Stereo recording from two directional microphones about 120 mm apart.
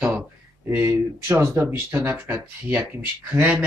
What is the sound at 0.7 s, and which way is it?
Speech, 20° right (ahead or behind).